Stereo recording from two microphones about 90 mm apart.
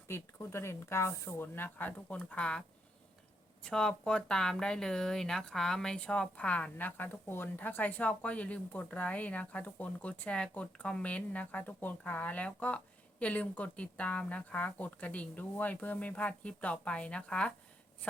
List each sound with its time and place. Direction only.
0.1 s speech: 30° left (ahead or behind); by 17.5 s 10° left (ahead or behind)